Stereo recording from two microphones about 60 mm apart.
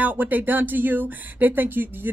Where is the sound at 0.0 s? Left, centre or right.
Right.